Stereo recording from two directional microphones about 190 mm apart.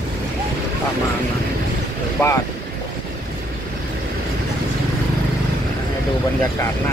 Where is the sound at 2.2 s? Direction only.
10° left (ahead or behind).